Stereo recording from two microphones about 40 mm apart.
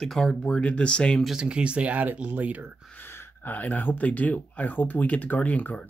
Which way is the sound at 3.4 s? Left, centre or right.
Left.